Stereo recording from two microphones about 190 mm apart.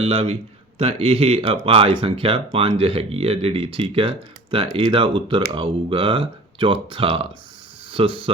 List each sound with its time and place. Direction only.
0.0 s speech: 30° right (ahead or behind)